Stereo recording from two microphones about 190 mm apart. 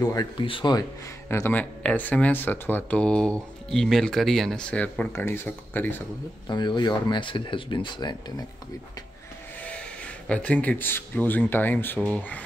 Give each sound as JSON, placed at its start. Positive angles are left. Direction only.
{"t": 0.0, "sound": "speech", "side_deg": 20}
{"t": 1.3, "sound": "speech", "side_deg": 10}
{"t": 6.4, "sound": "speech", "side_deg": 25}
{"t": 9.6, "sound": "speech", "side_deg": 5}